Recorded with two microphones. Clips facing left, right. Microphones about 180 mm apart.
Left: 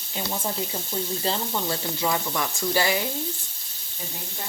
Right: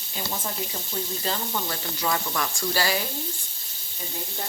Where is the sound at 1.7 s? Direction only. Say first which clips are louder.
Left 3 dB; 15° left (ahead or behind).